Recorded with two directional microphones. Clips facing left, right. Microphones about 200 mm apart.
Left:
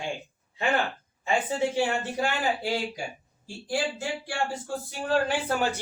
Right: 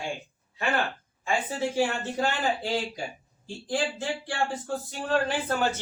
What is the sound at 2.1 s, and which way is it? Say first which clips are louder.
Speech: even; 10° left (ahead or behind).